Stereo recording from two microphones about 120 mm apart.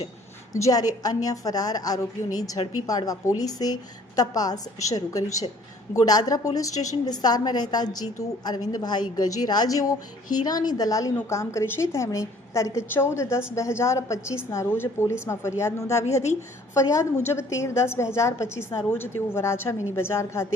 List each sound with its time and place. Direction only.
0.5 s a woman's voice: 30° left (ahead or behind)